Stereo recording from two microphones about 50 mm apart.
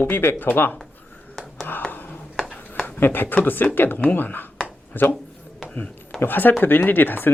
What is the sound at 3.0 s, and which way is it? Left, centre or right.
Speech, left.